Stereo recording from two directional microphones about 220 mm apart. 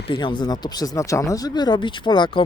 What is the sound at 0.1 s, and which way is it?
Speech, 20° left (ahead or behind).